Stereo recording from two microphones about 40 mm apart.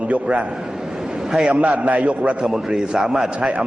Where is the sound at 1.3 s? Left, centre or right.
Centre.